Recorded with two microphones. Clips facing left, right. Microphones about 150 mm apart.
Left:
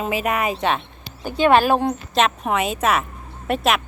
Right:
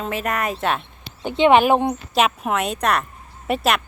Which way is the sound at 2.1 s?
5° right (ahead or behind).